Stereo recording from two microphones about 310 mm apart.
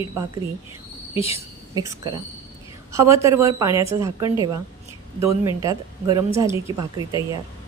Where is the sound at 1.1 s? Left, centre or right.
Centre.